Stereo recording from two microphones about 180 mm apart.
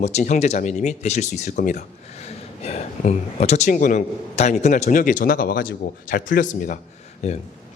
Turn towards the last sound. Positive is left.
turn(degrees=40)  # may be behind; listen again after turning